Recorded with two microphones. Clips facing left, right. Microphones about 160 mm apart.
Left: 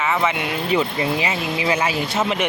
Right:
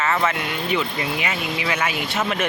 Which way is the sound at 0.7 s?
30° left (ahead or behind).